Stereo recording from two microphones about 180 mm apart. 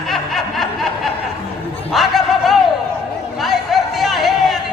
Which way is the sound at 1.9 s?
Centre (ahead or behind).